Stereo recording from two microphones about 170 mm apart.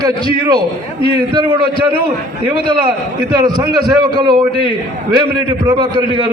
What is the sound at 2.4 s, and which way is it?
A man's voice, 30° right (ahead or behind).